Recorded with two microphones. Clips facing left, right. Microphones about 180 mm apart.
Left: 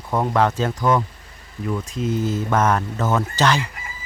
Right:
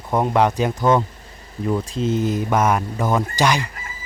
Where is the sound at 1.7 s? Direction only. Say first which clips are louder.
Right 3 dB; 30° right (ahead or behind); by 3.6 s 15° right (ahead or behind).